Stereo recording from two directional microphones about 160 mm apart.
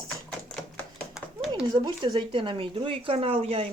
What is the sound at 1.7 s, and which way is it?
Speech, 25° right (ahead or behind).